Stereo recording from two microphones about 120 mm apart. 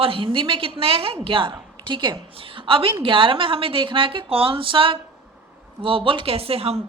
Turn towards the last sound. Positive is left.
turn(degrees=-55)  # may be behind; listen again after turning